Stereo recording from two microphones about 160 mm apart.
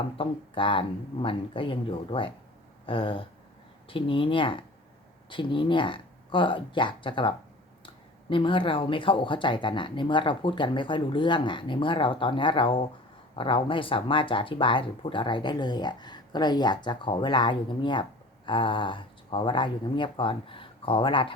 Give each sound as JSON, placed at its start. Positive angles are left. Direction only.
{"t": 0.2, "sound": "speech", "side_deg": 35}